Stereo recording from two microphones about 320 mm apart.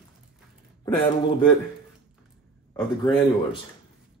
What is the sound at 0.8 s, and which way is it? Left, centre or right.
Speech, centre.